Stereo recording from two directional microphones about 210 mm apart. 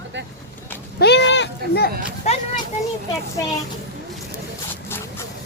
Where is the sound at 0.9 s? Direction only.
55° left (ahead or behind).